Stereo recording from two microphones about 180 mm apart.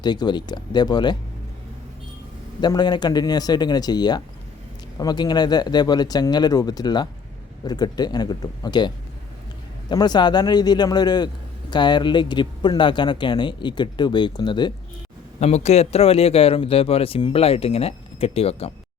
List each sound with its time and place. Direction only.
0.0 s speech: 25° left (ahead or behind)
2.6 s speech: 25° left (ahead or behind)
9.9 s speech: 25° left (ahead or behind)
15.4 s speech: 35° left (ahead or behind)